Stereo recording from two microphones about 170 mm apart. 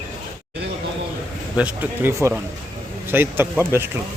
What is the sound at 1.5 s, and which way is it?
Speech, 10° right (ahead or behind).